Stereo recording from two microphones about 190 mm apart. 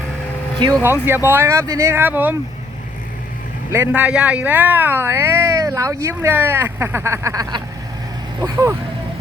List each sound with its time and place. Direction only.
0.8 s speech: 10° right (ahead or behind)
3.7 s speech: 10° right (ahead or behind)